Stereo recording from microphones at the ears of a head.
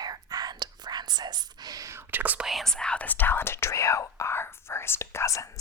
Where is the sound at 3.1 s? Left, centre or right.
Left.